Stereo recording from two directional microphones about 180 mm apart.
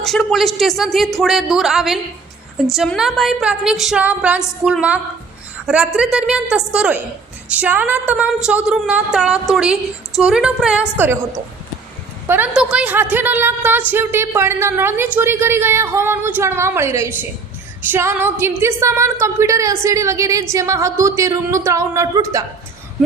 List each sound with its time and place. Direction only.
0.0 s a woman's voice: centre (ahead or behind); by 22.4 s 20° right (ahead or behind)